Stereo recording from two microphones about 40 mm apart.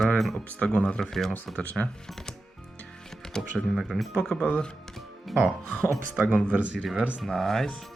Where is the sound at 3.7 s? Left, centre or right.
Centre.